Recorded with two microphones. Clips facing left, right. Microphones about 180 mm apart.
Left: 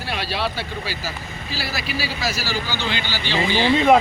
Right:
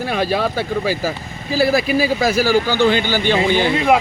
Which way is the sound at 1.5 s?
50° right (ahead or behind).